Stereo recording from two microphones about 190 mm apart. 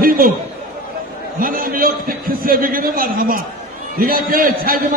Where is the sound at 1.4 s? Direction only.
50° right (ahead or behind).